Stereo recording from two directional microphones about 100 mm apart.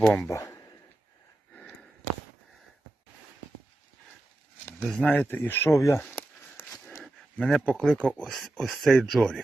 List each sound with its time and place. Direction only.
0.0 s speech: 10° left (ahead or behind)
0.3 s speech: 30° left (ahead or behind)
4.9 s speech: 15° left (ahead or behind); by 6.0 s 30° left (ahead or behind)
6.0 s a sound: 20° left (ahead or behind)
7.0 s a sound: centre (ahead or behind)
7.6 s speech: 10° left (ahead or behind)